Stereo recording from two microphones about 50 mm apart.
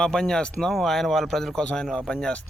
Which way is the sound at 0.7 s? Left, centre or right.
Centre.